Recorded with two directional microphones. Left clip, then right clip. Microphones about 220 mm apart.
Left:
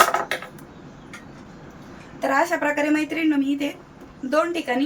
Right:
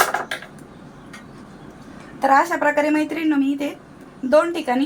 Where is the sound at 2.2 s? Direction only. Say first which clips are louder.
Right 5 dB; 20° right (ahead or behind).